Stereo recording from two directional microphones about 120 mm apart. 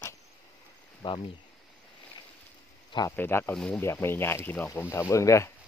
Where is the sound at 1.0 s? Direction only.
45° left (ahead or behind).